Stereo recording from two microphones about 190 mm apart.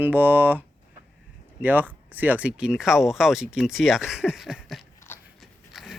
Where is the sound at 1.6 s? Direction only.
10° right (ahead or behind).